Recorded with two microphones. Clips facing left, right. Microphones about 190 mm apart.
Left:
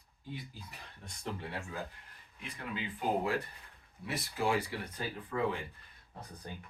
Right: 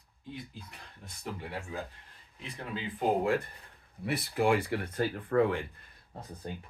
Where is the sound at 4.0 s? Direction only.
60° right (ahead or behind).